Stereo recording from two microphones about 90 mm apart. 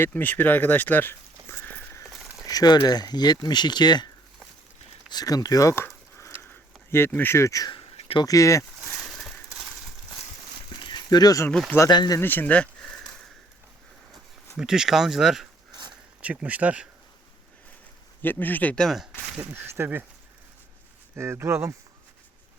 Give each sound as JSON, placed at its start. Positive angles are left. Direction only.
{"t": 0.0, "sound": "speech", "side_deg": 20}
{"t": 2.5, "sound": "speech", "side_deg": 45}
{"t": 6.4, "sound": "a sound", "side_deg": 25}
{"t": 7.7, "sound": "a sound", "side_deg": 90}
{"t": 8.2, "sound": "speech", "side_deg": 40}
{"t": 9.0, "sound": "a sound", "side_deg": 0}
{"t": 10.7, "sound": "a sound", "side_deg": 60}
{"t": 11.9, "sound": "speech", "side_deg": 50}
{"t": 12.2, "sound": "speech", "side_deg": 20}
{"t": 14.5, "sound": "speech", "side_deg": -5}
{"t": 18.2, "sound": "speech", "side_deg": 20}
{"t": 19.4, "sound": "speech", "side_deg": -25}
{"t": 21.2, "sound": "speech", "side_deg": -30}